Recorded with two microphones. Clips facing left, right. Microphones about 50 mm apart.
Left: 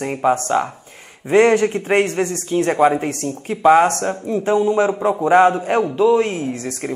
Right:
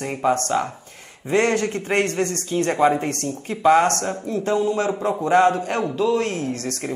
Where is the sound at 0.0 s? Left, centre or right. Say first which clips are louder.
Left 3 dB; centre.